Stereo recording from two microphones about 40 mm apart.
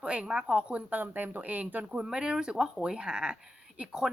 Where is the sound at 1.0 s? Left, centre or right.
Right.